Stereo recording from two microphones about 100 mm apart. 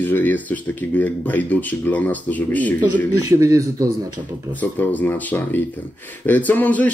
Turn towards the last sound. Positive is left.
turn(degrees=15)  # may be behind; listen again after turning